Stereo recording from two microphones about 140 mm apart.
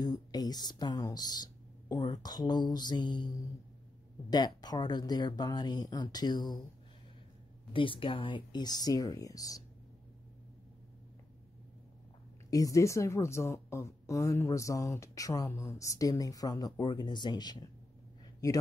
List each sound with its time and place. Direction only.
0.0 s a woman's voice: 30° left (ahead or behind)
7.7 s a woman's voice: 40° left (ahead or behind)
12.4 s a woman's voice: 25° left (ahead or behind)